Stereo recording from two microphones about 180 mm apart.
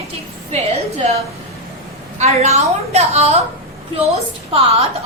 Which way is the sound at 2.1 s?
35° right (ahead or behind).